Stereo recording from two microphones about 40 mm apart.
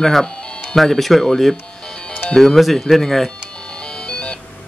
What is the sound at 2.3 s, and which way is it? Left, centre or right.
Speech, centre.